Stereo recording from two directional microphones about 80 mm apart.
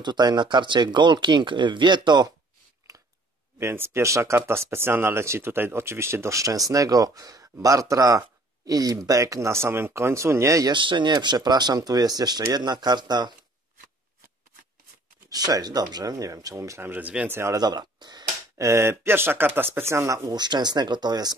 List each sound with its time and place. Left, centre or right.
0.0 s speech: right
3.5 s speech: right
10.7 s speech: right
15.2 s speech: right
16.8 s speech: right
17.6 s speech: right
18.6 s speech: right
20.3 s speech: right